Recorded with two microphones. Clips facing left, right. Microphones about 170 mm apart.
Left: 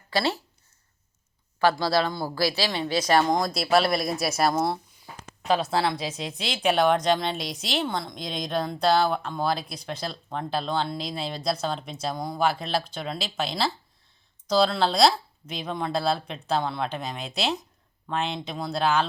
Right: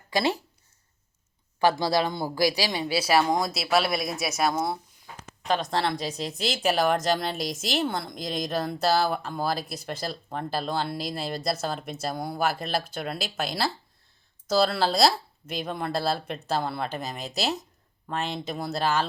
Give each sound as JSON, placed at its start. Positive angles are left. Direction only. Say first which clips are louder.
{"t": 0.1, "sound": "speech", "louder": "right 1 dB", "side_deg": -15}
{"t": 1.5, "sound": "a woman's voice", "louder": "even", "side_deg": -15}